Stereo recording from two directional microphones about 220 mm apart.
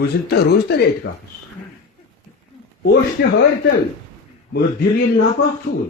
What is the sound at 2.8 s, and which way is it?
Speech, 50° left (ahead or behind).